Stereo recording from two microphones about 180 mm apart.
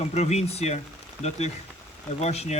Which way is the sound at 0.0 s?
35° left (ahead or behind).